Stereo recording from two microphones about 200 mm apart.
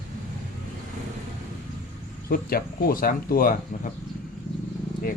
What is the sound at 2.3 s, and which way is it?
Speech, 45° left (ahead or behind).